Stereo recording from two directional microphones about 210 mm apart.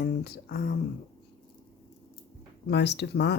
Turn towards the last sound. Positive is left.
turn(degrees=55)  # may be behind; listen again after turning